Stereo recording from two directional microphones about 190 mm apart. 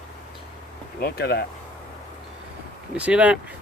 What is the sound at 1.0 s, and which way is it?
Speech, 55° left (ahead or behind).